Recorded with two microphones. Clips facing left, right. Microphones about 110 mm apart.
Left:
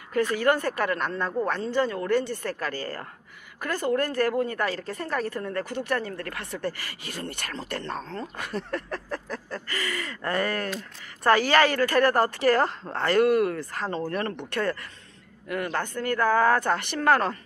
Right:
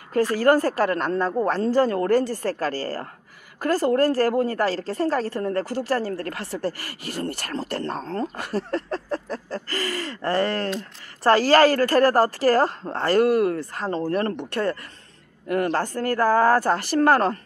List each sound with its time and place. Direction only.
0.1 s speech: 35° right (ahead or behind)
1.6 s speech: 40° right (ahead or behind)